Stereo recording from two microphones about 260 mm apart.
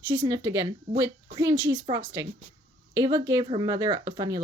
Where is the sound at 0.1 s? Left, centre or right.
Centre.